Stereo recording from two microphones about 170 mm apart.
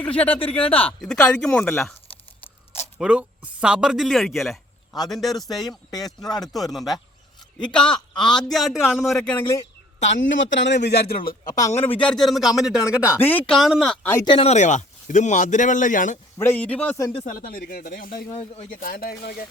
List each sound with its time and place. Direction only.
0.0 s speech: 10° left (ahead or behind)
3.0 s speech: 5° right (ahead or behind)
5.9 s speech: 20° left (ahead or behind)
6.5 s speech: centre (ahead or behind)
10.1 s a man's voice: 90° left
10.8 s speech: 70° left (ahead or behind)
11.5 s speech: 15° left (ahead or behind); by 13.1 s 5° right (ahead or behind)
13.1 s speech: 10° left (ahead or behind)
13.6 s speech: centre (ahead or behind)
14.3 s speech: 35° left (ahead or behind); by 16.1 s 50° left (ahead or behind)
16.4 s speech: 10° left (ahead or behind)
17.2 s speech: 60° left (ahead or behind)
18.3 s speech: 40° left (ahead or behind)
18.7 s speech: 55° left (ahead or behind)